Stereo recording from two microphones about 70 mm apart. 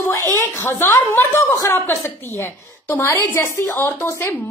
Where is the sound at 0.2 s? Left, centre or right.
Left.